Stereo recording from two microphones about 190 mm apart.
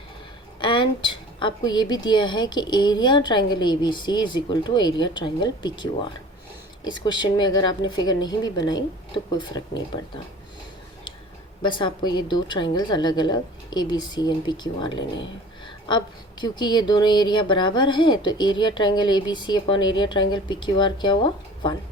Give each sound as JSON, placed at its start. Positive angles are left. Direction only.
{"t": 0.6, "sound": "a woman's voice", "side_deg": 25}
{"t": 11.6, "sound": "a woman's voice", "side_deg": 25}